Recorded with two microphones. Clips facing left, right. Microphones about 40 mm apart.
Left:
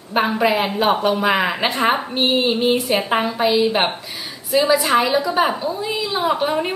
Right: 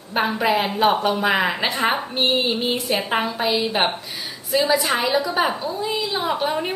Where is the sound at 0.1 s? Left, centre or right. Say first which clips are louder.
Left 2 dB; centre.